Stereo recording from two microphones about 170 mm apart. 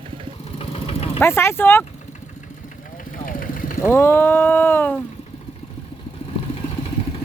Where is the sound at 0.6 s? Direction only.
35° left (ahead or behind).